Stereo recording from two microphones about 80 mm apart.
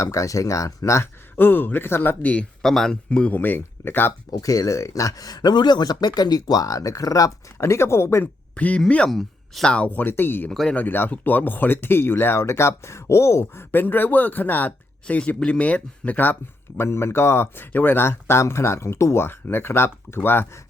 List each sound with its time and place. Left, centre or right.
0.0 s speech: left
1.4 s speech: left
2.3 s speech: centre
2.6 s speech: centre
3.1 s speech: centre
4.3 s speech: left
7.6 s speech: left
8.5 s speech: centre
9.0 s speech: centre
9.7 s speech: centre
10.5 s speech: centre
10.8 s speech: left